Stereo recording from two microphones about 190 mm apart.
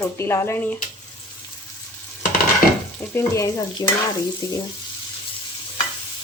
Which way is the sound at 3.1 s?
15° left (ahead or behind).